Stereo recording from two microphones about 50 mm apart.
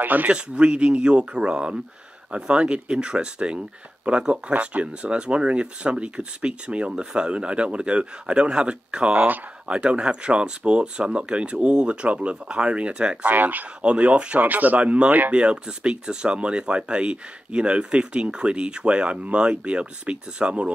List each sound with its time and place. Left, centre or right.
0.0 s speech: right
0.3 s speech: centre
13.3 s speech: right
13.8 s speech: right
14.5 s speech: right
14.8 s speech: right
15.3 s speech: right